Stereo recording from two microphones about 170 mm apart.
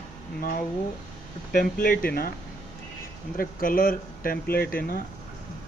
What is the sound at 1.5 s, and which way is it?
Speech, 55° left (ahead or behind).